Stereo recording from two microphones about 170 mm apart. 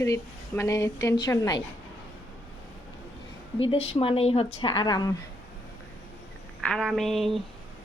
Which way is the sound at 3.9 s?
35° left (ahead or behind).